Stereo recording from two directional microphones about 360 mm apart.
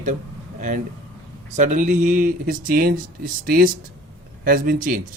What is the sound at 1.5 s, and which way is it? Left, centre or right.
Speech, right.